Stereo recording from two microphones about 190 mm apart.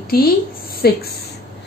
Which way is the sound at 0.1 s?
50° left (ahead or behind).